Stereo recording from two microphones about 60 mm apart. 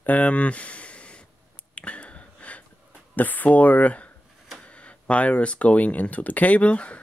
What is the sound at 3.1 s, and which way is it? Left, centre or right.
Speech, left.